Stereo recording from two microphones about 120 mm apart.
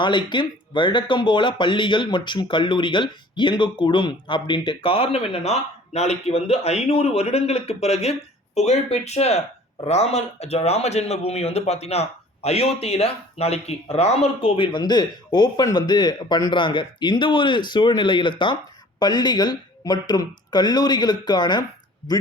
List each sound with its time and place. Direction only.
0.0 s speech: 40° left (ahead or behind)